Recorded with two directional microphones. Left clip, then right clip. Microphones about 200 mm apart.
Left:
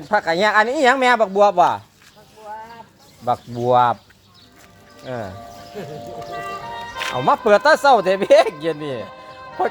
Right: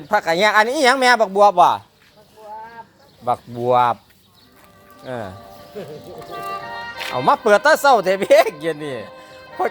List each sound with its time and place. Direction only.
0.1 s speech: 15° right (ahead or behind)
3.2 s speech: 5° right (ahead or behind)
5.0 s speech: 15° right (ahead or behind)
6.4 s music: 45° right (ahead or behind)
7.0 s speech: 10° right (ahead or behind)